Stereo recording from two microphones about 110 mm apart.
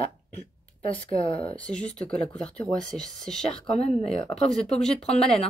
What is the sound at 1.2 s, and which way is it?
Speech, 60° left (ahead or behind).